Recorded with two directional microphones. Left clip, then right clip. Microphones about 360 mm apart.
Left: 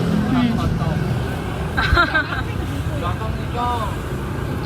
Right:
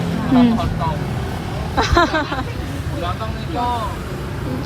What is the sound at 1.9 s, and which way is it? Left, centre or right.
Speech, centre.